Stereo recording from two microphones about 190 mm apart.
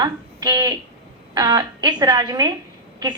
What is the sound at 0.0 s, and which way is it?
A woman's voice, 20° right (ahead or behind).